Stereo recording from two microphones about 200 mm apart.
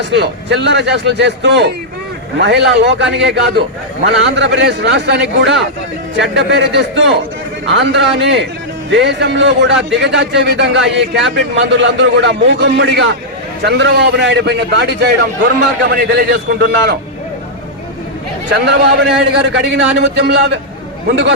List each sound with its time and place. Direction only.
0.0 s a man's voice: 60° right (ahead or behind)
16.1 s a man's voice: 55° right (ahead or behind)
18.5 s a man's voice: 55° right (ahead or behind)